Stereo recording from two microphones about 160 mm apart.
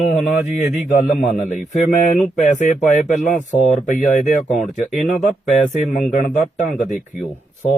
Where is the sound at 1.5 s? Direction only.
50° left (ahead or behind).